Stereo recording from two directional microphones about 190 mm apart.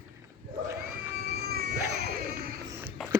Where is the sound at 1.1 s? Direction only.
55° right (ahead or behind).